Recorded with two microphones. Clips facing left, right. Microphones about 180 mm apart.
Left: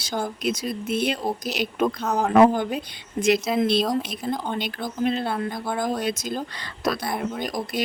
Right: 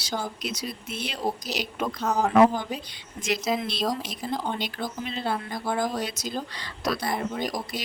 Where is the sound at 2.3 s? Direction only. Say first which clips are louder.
Left 4 dB; 55° left (ahead or behind).